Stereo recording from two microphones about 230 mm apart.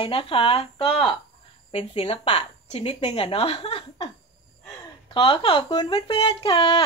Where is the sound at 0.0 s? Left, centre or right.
Left.